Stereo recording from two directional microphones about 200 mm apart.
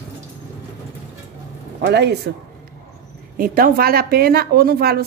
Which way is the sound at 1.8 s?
55° right (ahead or behind).